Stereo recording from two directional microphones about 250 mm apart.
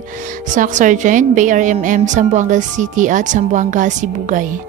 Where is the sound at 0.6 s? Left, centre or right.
Right.